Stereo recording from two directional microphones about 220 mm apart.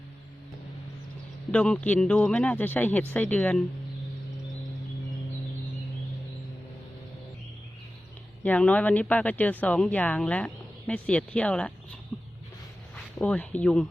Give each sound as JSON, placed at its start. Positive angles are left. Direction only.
{"t": 1.5, "sound": "a man's voice", "side_deg": 5}
{"t": 8.4, "sound": "speech", "side_deg": 5}
{"t": 12.1, "sound": "a sound", "side_deg": 0}
{"t": 13.1, "sound": "speech", "side_deg": 5}